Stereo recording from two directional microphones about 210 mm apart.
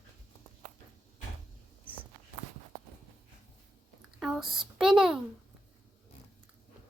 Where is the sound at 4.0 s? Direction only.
Centre (ahead or behind).